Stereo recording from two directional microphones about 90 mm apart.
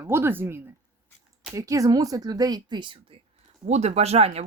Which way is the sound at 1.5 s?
35° right (ahead or behind).